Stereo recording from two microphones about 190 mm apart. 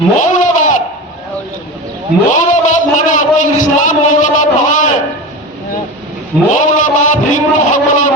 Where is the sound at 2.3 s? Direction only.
40° left (ahead or behind).